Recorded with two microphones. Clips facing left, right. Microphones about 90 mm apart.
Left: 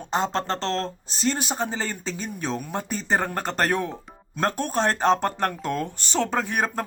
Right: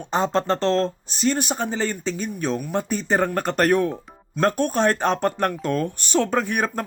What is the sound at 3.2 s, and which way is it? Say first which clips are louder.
Speech: right 5 dB; 25° left (ahead or behind).